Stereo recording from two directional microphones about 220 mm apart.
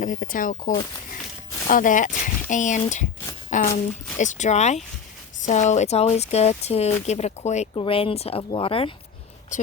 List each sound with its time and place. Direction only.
0.0 s speech: 40° left (ahead or behind)